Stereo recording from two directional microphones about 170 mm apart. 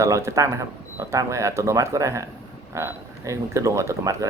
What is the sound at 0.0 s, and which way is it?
Speech, 15° right (ahead or behind).